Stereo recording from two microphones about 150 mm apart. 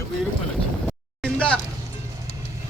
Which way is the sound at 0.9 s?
5° left (ahead or behind).